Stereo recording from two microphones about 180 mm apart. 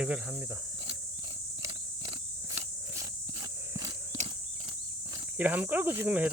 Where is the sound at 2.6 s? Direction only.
15° right (ahead or behind).